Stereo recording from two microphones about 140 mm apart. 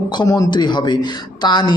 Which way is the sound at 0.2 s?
30° left (ahead or behind).